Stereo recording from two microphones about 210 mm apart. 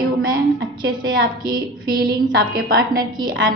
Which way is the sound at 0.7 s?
20° right (ahead or behind).